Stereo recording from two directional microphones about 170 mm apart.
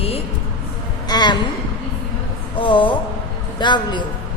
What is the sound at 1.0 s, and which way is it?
Speech, 25° left (ahead or behind).